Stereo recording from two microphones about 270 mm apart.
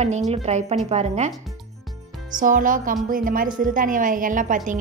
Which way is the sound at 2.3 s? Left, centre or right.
Right.